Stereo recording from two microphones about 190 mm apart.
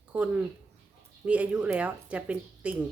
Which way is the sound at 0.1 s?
5° right (ahead or behind).